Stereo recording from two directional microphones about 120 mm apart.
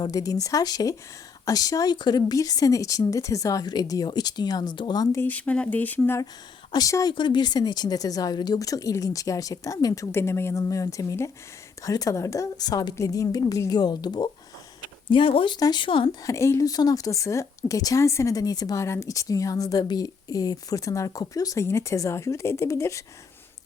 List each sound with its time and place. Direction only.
0.0 s speech: 30° left (ahead or behind)
5.1 s speech: 15° left (ahead or behind)
6.7 s speech: 30° left (ahead or behind)
15.1 s speech: 45° left (ahead or behind)
15.5 s speech: 35° left (ahead or behind)
16.2 s speech: 25° left (ahead or behind)